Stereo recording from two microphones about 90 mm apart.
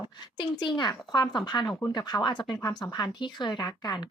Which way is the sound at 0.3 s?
55° left (ahead or behind).